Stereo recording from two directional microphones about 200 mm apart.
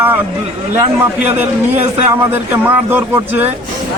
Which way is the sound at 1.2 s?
10° right (ahead or behind).